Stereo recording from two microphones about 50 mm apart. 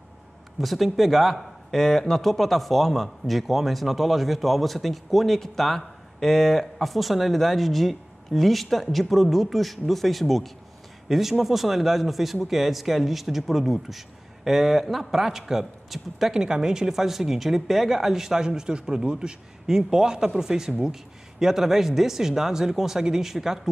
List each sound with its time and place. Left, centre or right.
0.6 s speech: centre